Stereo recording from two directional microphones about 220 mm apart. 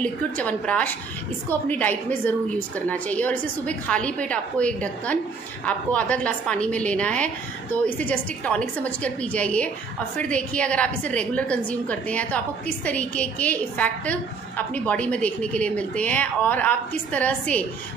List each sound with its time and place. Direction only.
0.0 s a woman's voice: 5° left (ahead or behind)